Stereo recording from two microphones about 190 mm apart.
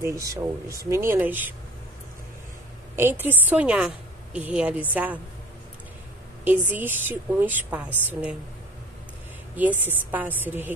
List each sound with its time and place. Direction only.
0.0 s a woman's voice: 15° right (ahead or behind)
3.0 s a woman's voice: 10° right (ahead or behind)
6.7 s a woman's voice: 10° right (ahead or behind)
9.6 s a woman's voice: 10° right (ahead or behind)